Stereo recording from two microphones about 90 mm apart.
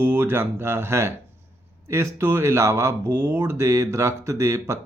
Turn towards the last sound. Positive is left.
turn(degrees=-30)  # may be behind; listen again after turning